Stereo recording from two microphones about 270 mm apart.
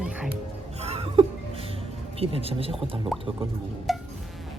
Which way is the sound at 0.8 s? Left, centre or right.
Right.